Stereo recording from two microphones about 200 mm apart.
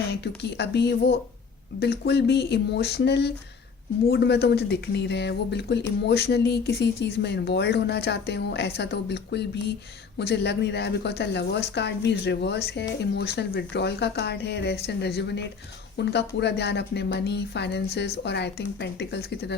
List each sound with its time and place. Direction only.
0.1 s speech: 55° left (ahead or behind)